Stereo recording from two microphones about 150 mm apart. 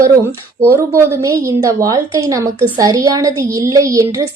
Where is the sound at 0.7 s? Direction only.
15° right (ahead or behind).